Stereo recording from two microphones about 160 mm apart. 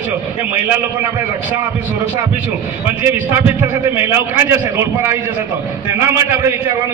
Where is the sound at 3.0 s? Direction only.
15° right (ahead or behind).